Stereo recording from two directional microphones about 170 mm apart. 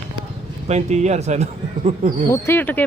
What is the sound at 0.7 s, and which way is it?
Speech, 40° right (ahead or behind).